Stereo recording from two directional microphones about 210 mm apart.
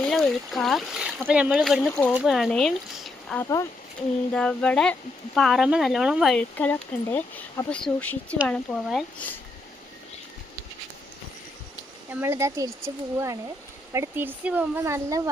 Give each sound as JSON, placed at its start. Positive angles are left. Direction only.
{"t": 0.0, "sound": "speech", "side_deg": 0}
{"t": 3.4, "sound": "speech", "side_deg": 15}
{"t": 4.4, "sound": "speech", "side_deg": 5}
{"t": 12.2, "sound": "speech", "side_deg": -10}